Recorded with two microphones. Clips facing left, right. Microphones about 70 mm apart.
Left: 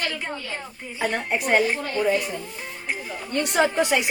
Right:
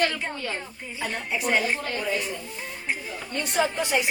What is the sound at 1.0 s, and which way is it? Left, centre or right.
A woman's voice, left.